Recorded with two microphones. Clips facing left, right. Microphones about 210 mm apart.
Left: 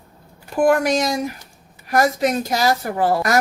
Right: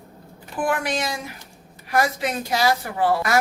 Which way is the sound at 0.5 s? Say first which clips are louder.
Left 8 dB; 40° left (ahead or behind).